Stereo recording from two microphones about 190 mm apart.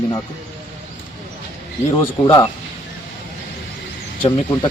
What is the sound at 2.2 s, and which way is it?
Speech, 15° left (ahead or behind).